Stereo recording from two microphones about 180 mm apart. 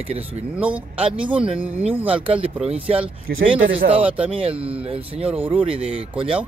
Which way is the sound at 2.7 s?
30° right (ahead or behind).